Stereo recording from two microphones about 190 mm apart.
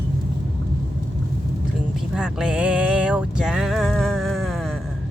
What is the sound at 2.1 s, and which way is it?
Music, 5° right (ahead or behind).